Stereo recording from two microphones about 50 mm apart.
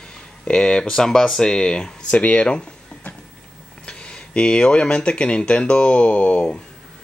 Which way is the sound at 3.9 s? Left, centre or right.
Centre.